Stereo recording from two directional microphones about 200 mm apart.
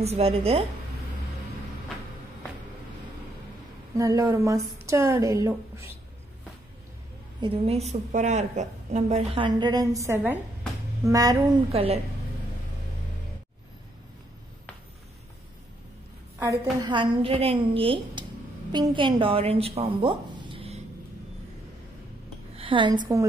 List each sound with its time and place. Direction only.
0.0 s a woman's voice: 30° right (ahead or behind)
3.9 s a woman's voice: 15° right (ahead or behind)
7.3 s a woman's voice: 25° right (ahead or behind)
11.7 s a woman's voice: 30° right (ahead or behind)
16.8 s a woman's voice: 25° right (ahead or behind)
22.6 s a woman's voice: 25° right (ahead or behind)